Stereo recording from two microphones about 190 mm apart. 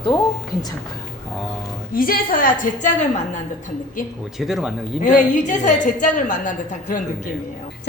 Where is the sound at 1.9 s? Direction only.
50° left (ahead or behind).